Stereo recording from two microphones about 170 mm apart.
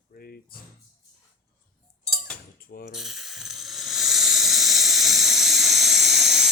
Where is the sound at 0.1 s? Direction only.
60° left (ahead or behind).